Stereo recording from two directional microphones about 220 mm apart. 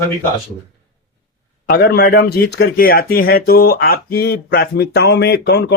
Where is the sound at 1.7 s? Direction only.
45° left (ahead or behind).